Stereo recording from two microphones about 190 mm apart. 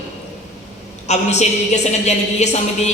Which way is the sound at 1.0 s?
35° left (ahead or behind).